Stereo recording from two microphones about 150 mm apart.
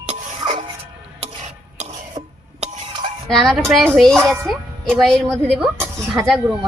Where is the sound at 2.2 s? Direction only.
25° right (ahead or behind).